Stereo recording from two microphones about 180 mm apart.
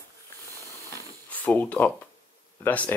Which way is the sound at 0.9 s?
10° left (ahead or behind).